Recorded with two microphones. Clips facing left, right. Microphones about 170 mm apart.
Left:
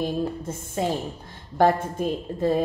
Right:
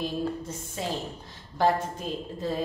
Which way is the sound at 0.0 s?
50° left (ahead or behind).